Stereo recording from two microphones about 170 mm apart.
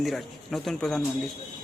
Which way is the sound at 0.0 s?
Centre (ahead or behind).